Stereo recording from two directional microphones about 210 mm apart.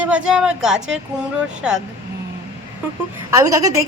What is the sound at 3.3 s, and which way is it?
Speech, 15° right (ahead or behind).